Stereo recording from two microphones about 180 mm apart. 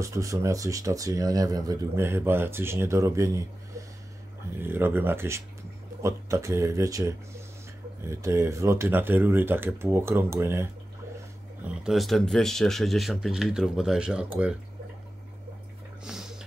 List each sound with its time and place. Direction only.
0.0 s speech: 15° right (ahead or behind)
4.6 s speech: 10° right (ahead or behind)
16.0 s a sound: 5° right (ahead or behind)